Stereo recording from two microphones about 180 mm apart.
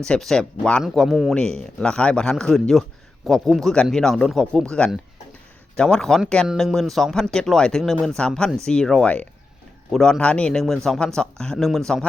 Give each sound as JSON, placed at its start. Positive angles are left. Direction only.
{"t": 0.0, "sound": "speech", "side_deg": 5}